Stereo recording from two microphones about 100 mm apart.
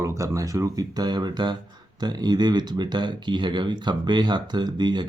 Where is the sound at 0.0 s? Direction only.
30° right (ahead or behind).